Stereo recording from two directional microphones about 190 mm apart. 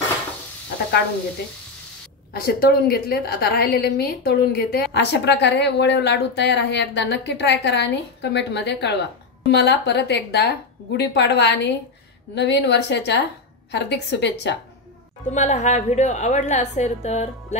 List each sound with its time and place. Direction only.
2.3 s a woman's voice: 50° left (ahead or behind)
4.9 s a woman's voice: 65° left (ahead or behind)
15.2 s a woman's voice: 40° left (ahead or behind)